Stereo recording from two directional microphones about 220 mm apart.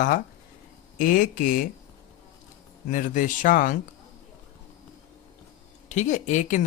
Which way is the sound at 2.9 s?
35° left (ahead or behind).